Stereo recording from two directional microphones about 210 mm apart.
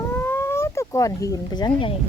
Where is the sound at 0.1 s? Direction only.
10° left (ahead or behind).